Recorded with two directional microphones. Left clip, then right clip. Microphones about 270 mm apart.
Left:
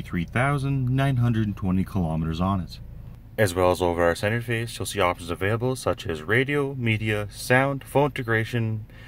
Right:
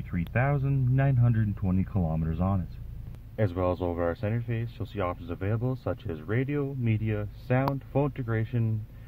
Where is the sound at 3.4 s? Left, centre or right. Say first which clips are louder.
Left 8 dB; left.